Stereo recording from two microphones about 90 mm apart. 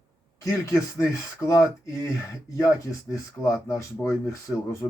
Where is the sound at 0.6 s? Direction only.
35° left (ahead or behind).